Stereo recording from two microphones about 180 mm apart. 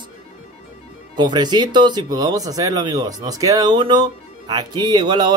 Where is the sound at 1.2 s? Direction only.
25° right (ahead or behind).